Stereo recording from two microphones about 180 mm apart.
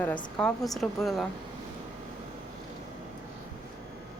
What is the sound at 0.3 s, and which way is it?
Speech, 5° left (ahead or behind).